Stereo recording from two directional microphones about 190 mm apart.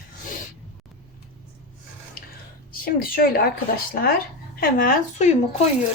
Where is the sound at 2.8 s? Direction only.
50° left (ahead or behind).